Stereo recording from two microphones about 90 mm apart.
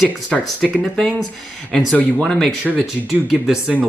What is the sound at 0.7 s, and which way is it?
Speech, 5° left (ahead or behind).